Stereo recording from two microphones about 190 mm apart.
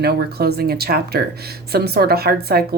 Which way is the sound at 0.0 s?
55° right (ahead or behind).